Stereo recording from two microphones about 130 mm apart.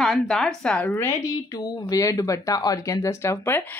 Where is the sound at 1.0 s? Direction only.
20° left (ahead or behind).